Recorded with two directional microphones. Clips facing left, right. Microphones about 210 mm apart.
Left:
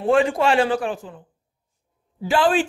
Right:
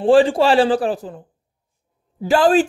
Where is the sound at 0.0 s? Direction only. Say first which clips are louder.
Right 5 dB; 30° right (ahead or behind).